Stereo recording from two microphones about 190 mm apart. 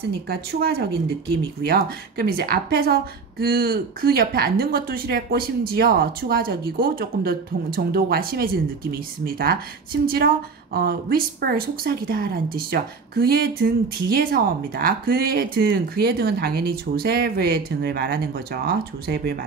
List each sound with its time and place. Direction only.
0.3 s a woman's voice: 55° right (ahead or behind)